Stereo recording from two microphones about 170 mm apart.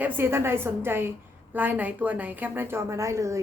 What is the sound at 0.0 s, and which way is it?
A woman's voice, 10° right (ahead or behind).